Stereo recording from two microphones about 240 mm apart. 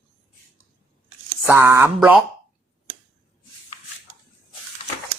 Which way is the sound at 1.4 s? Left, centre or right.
Centre.